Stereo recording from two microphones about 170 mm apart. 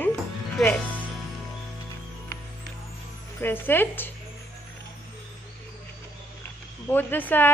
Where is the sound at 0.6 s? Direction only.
Centre (ahead or behind).